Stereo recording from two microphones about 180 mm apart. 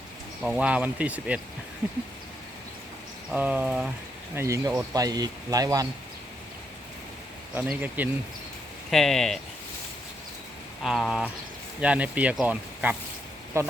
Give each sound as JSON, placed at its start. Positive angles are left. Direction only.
{"t": 0.4, "sound": "speech", "side_deg": -5}
{"t": 3.2, "sound": "speech", "side_deg": -10}
{"t": 4.4, "sound": "speech", "side_deg": -15}
{"t": 7.5, "sound": "speech", "side_deg": -10}
{"t": 8.9, "sound": "speech", "side_deg": 0}
{"t": 10.8, "sound": "speech", "side_deg": 0}